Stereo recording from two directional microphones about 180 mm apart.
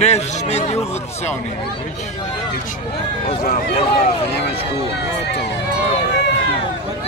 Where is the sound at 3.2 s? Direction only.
35° left (ahead or behind).